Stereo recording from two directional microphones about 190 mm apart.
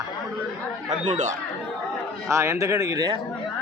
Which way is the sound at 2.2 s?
15° right (ahead or behind).